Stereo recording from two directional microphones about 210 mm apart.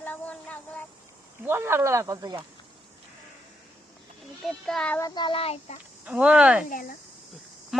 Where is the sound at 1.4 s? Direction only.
10° right (ahead or behind).